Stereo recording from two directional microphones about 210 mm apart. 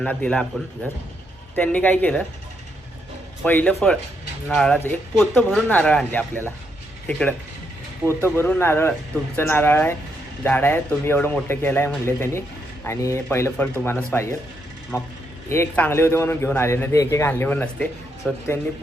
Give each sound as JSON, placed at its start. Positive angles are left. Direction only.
{"t": 0.0, "sound": "speech", "side_deg": 5}
{"t": 1.5, "sound": "a man's voice", "side_deg": 5}
{"t": 3.4, "sound": "a man's voice", "side_deg": 5}